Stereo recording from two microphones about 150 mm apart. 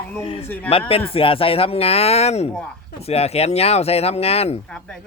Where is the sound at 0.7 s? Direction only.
40° left (ahead or behind).